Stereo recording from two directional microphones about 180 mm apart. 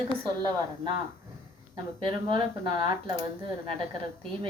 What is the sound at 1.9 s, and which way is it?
Speech, 25° right (ahead or behind).